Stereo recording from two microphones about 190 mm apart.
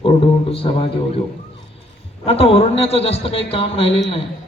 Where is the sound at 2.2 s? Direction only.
30° left (ahead or behind).